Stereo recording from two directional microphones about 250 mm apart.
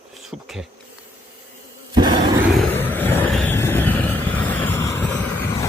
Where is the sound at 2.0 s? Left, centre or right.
Centre.